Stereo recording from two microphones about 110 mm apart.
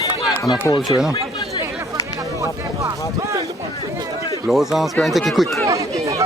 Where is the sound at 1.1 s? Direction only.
35° left (ahead or behind).